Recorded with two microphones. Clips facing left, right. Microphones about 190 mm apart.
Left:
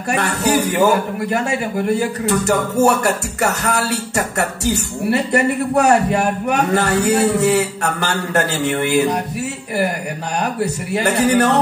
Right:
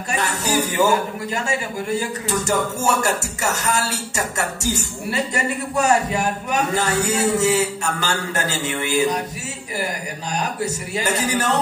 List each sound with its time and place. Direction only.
0.1 s a man's voice: 60° left (ahead or behind)
10.4 s a man's voice: 60° left (ahead or behind)